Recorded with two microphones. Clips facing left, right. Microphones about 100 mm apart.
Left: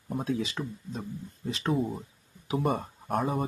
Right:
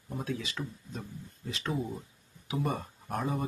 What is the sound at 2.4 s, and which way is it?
Speech, 50° left (ahead or behind).